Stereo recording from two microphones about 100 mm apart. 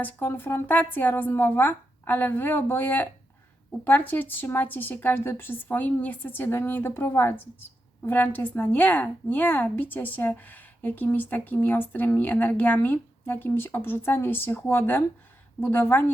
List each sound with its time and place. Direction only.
0.0 s a woman's voice: 20° left (ahead or behind)